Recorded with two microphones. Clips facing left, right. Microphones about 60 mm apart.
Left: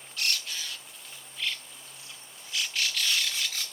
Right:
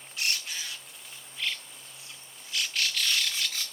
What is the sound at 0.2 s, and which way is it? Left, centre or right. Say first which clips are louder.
Crow: even; centre.